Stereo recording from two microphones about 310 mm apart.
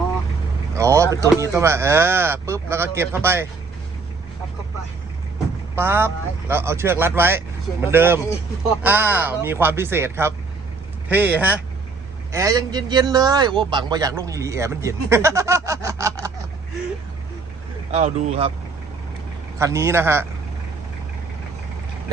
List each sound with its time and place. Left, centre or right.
0.8 s a man's voice: centre
5.7 s a man's voice: centre
17.9 s speech: right
19.5 s a man's voice: centre